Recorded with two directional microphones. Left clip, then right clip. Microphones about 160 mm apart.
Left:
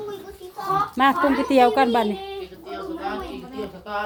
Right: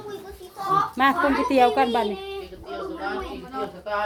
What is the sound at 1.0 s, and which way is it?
Speech, 25° left (ahead or behind).